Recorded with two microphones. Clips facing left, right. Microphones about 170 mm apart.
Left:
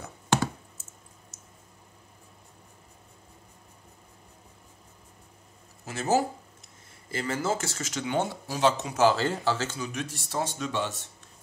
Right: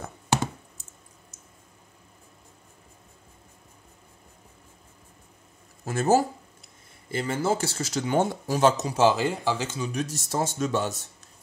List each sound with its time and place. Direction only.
5.9 s speech: 50° right (ahead or behind)
7.1 s speech: 30° right (ahead or behind); by 8.8 s 45° right (ahead or behind)
8.8 s speech: 30° right (ahead or behind)
9.1 s speech: 10° right (ahead or behind)
9.9 s speech: 40° right (ahead or behind)